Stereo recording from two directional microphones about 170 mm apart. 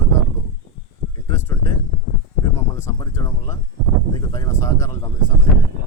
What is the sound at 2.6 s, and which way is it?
Speech, 15° left (ahead or behind).